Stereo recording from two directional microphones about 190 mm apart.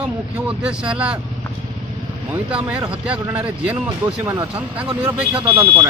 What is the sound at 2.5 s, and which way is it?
Speech, 5° right (ahead or behind).